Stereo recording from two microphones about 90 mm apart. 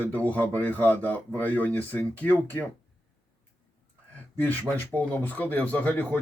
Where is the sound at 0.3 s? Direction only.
20° left (ahead or behind).